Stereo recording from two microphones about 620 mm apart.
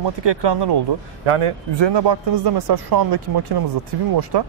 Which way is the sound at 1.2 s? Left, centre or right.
Right.